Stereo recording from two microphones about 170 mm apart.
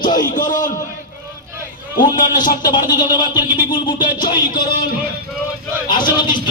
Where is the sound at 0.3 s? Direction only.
50° left (ahead or behind).